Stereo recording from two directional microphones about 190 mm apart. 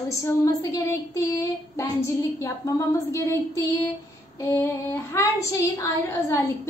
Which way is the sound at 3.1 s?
15° left (ahead or behind).